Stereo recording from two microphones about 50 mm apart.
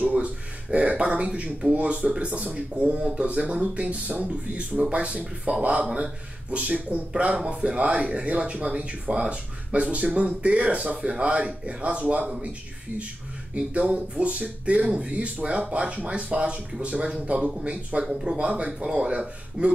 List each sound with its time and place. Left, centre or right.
0.0 s speech: right
13.6 s speech: right